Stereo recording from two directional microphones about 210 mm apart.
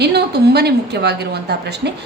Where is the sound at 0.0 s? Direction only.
50° right (ahead or behind).